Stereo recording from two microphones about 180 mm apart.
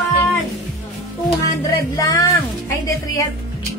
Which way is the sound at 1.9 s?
20° left (ahead or behind).